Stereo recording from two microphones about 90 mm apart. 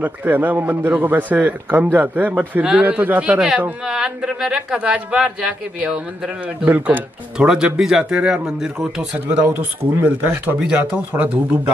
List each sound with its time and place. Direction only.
0.0 s a man's voice: 20° right (ahead or behind)
7.3 s a man's voice: 10° right (ahead or behind)